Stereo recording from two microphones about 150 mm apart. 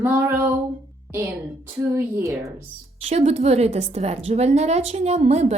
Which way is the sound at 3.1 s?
45° right (ahead or behind).